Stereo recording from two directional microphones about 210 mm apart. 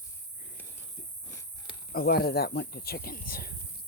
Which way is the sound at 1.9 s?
45° left (ahead or behind).